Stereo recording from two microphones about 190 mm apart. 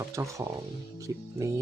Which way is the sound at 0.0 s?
15° right (ahead or behind).